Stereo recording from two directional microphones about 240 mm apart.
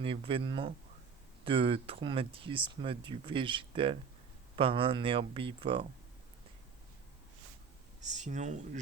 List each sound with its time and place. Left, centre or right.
0.0 s speech: right
8.0 s speech: right